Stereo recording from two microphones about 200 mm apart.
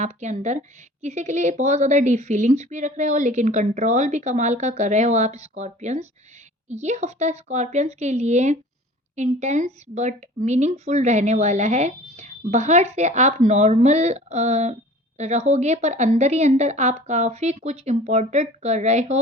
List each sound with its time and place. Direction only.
0.0 s a woman's voice: 35° right (ahead or behind)